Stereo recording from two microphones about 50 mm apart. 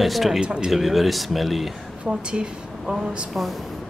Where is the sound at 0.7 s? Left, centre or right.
Centre.